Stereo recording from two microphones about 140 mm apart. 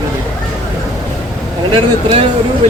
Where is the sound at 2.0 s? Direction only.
45° right (ahead or behind).